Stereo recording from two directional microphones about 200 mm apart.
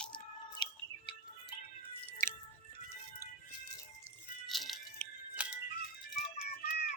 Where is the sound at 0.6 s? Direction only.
20° left (ahead or behind).